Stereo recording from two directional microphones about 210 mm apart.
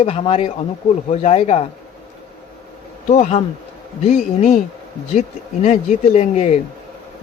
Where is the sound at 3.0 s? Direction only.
35° left (ahead or behind).